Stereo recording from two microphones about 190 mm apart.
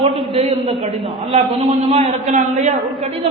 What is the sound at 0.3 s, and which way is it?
A man's voice, 30° right (ahead or behind).